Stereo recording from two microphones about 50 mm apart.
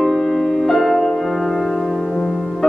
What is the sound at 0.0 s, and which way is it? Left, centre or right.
Music, centre.